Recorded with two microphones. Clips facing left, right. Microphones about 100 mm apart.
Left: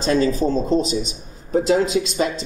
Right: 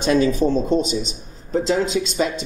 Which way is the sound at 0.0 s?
Centre (ahead or behind).